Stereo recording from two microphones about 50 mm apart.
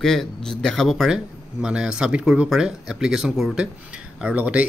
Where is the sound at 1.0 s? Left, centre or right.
Centre.